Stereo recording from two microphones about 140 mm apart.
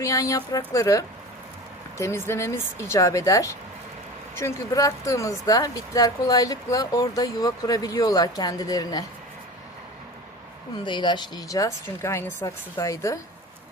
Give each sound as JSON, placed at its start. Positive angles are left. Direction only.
{"t": 0.0, "sound": "speech", "side_deg": 25}
{"t": 10.8, "sound": "speech", "side_deg": 35}